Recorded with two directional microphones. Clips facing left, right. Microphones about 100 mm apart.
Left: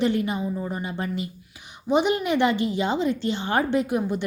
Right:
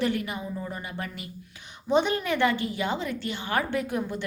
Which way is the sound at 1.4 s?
15° left (ahead or behind).